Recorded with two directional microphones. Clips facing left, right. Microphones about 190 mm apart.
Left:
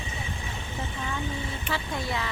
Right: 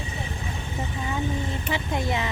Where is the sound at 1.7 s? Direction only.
20° right (ahead or behind).